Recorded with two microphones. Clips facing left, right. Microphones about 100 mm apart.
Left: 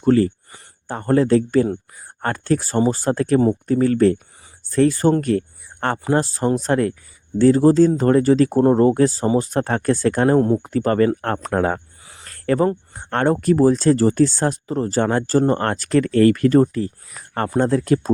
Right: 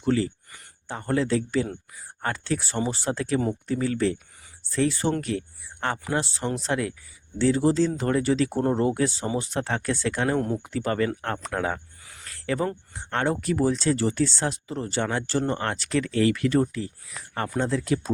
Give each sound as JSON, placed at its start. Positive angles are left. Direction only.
{"t": 0.0, "sound": "speech", "side_deg": 50}